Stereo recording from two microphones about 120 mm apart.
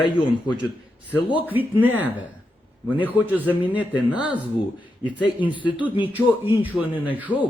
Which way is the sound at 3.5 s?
10° right (ahead or behind).